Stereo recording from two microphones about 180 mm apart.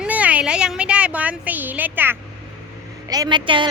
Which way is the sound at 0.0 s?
10° right (ahead or behind).